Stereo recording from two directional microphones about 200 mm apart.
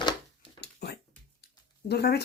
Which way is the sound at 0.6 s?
55° left (ahead or behind).